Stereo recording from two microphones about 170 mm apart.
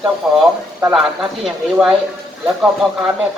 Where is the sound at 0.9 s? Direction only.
Centre (ahead or behind).